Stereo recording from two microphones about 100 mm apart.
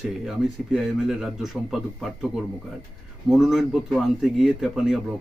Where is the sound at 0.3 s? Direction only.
5° right (ahead or behind).